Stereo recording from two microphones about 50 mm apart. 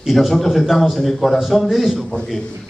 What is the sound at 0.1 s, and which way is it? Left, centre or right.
A man's voice, centre.